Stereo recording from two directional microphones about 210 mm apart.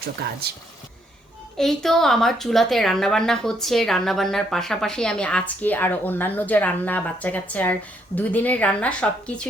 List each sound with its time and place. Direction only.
0.2 s speech: 50° right (ahead or behind)
1.5 s a woman's voice: centre (ahead or behind)